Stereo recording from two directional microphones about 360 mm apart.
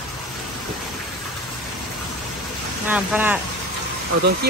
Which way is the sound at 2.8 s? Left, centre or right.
Centre.